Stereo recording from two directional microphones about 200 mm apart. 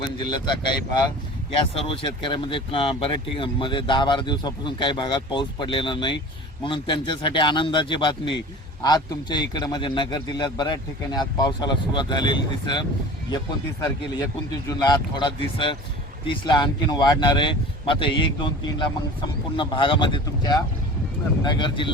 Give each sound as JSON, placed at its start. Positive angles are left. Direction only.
{"t": 0.0, "sound": "speech", "side_deg": 20}